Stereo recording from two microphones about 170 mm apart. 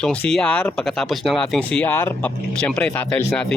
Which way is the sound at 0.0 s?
5° left (ahead or behind).